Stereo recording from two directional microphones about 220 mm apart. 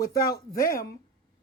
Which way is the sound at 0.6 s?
45° left (ahead or behind).